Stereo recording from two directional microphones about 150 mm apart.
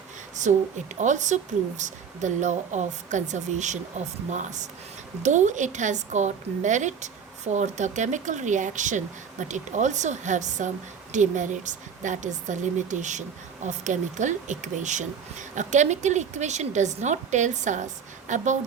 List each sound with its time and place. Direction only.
0.4 s a woman's voice: 55° right (ahead or behind)